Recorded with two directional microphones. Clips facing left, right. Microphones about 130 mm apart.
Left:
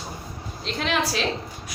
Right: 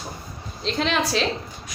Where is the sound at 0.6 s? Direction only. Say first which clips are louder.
Right 2 dB; 5° left (ahead or behind).